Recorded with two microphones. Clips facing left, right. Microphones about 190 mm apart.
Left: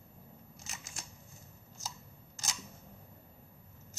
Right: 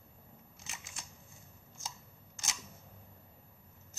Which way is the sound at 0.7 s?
40° left (ahead or behind).